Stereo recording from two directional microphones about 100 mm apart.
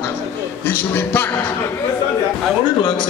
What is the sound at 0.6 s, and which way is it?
Speech, 20° left (ahead or behind).